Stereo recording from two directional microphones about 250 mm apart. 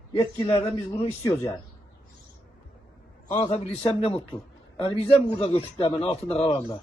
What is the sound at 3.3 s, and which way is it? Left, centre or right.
A man's voice, left.